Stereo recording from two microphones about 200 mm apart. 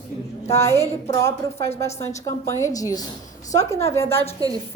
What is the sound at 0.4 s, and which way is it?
A woman's voice, 15° left (ahead or behind).